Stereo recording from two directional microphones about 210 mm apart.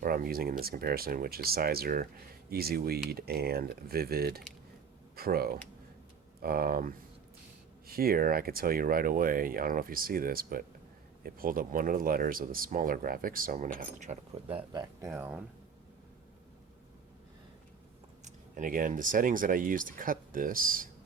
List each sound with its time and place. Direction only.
0.0 s speech: 45° right (ahead or behind); by 15.1 s 20° right (ahead or behind)
15.1 s speech: 10° right (ahead or behind)
18.3 s speech: 40° right (ahead or behind)